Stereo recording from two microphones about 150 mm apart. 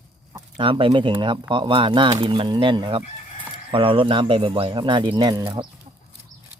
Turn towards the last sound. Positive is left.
turn(degrees=-30)  # may be behind; listen again after turning